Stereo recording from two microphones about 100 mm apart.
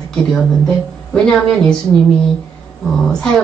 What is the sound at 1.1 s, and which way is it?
Speech, 5° left (ahead or behind).